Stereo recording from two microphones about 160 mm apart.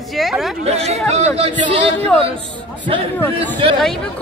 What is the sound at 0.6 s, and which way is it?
Speech, 40° right (ahead or behind).